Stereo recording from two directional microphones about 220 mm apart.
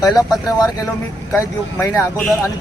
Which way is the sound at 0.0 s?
15° left (ahead or behind).